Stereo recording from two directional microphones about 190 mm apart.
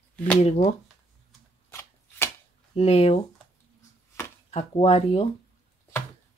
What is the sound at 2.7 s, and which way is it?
Speech, 30° left (ahead or behind).